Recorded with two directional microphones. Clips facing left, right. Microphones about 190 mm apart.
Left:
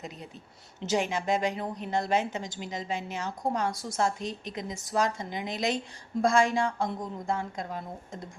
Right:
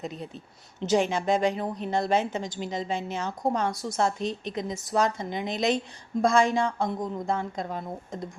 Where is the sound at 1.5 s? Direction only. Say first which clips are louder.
Right 3 dB; 25° right (ahead or behind).